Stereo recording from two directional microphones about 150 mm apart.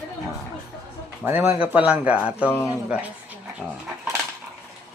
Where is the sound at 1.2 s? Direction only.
15° right (ahead or behind).